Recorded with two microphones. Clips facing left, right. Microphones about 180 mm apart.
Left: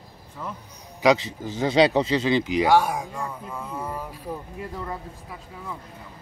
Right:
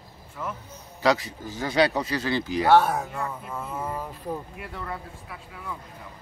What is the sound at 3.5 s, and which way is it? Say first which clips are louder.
Speech: even; 5° right (ahead or behind).